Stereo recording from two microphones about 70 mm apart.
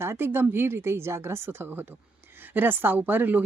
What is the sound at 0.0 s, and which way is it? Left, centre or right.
Speech, right.